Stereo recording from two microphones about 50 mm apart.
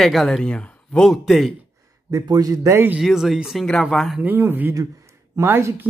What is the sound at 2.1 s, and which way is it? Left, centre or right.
Speech, right.